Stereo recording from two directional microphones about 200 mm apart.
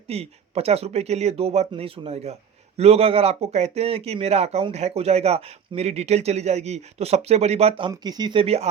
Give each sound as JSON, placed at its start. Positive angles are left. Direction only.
{"t": 0.1, "sound": "speech", "side_deg": -30}